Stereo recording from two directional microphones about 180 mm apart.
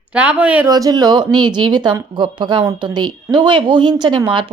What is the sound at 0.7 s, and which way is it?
Speech, 20° right (ahead or behind).